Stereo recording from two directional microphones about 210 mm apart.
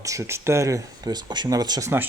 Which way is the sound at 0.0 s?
15° right (ahead or behind).